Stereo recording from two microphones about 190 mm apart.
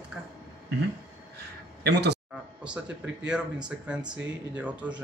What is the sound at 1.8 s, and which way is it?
Speech, 60° right (ahead or behind).